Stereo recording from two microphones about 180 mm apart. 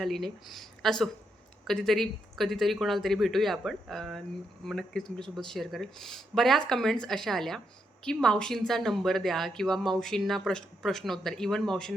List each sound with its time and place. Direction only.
0.0 s speech: centre (ahead or behind)